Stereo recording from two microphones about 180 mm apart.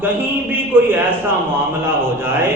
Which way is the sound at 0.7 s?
10° right (ahead or behind).